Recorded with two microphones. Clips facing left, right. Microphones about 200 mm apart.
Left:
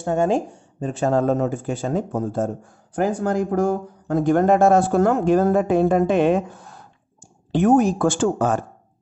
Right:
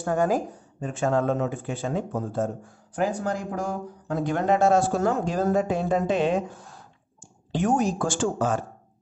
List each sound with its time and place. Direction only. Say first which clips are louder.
0.0 s speech: left 3 dB; 25° left (ahead or behind); by 8.5 s 55° left (ahead or behind)